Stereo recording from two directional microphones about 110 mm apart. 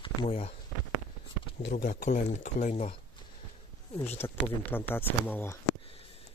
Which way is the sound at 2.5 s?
90° left.